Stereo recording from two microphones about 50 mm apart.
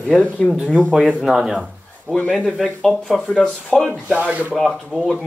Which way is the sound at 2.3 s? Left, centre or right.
Centre.